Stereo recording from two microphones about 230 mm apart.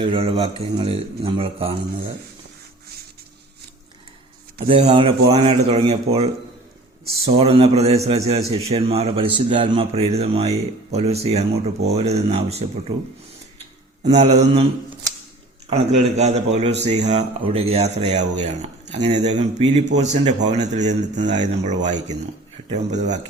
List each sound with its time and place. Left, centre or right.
0.0 s a man's voice: right
4.6 s a man's voice: right
7.3 s a man's voice: right
14.0 s a man's voice: right
15.7 s a man's voice: right